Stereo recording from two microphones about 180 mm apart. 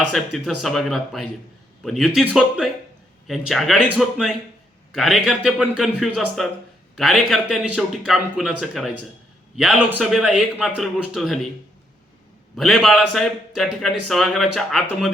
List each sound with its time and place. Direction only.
0.1 s a man's voice: centre (ahead or behind)
12.5 s a man's voice: centre (ahead or behind)